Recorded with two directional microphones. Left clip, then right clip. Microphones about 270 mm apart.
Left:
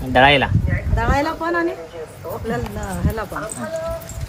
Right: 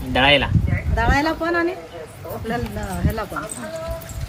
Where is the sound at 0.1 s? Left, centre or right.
Left.